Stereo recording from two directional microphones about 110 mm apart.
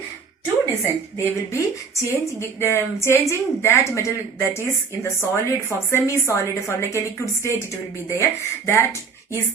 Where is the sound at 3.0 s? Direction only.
25° left (ahead or behind).